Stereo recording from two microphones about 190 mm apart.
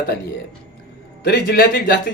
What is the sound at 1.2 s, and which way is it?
Speech, 60° left (ahead or behind).